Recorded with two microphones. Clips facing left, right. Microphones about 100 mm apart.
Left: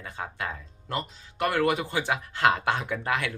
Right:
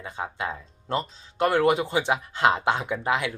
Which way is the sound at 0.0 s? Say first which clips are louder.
Right 3 dB; 20° right (ahead or behind).